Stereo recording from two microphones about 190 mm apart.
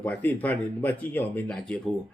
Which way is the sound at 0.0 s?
10° left (ahead or behind).